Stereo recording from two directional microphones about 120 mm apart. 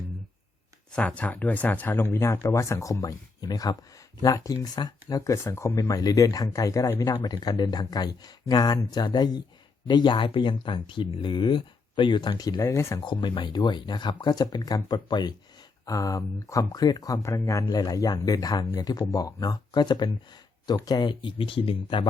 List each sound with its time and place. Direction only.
0.9 s speech: 10° left (ahead or behind)
7.1 s speech: 40° left (ahead or behind); by 13.1 s 25° left (ahead or behind)
13.1 s speech: 40° left (ahead or behind)